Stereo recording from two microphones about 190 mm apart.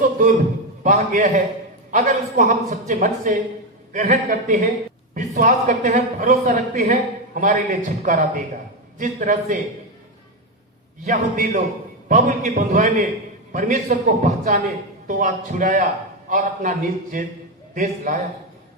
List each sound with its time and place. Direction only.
0.0 s a sound: 45° right (ahead or behind)
0.9 s a man's voice: 40° right (ahead or behind)
11.0 s a man's voice: 45° right (ahead or behind)